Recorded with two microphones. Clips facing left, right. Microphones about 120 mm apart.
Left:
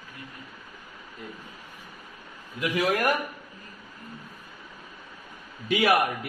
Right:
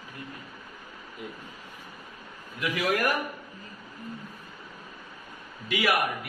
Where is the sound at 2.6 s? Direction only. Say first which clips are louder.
Left 2 dB; 30° left (ahead or behind).